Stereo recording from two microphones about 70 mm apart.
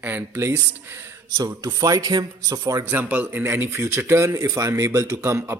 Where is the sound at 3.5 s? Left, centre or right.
Right.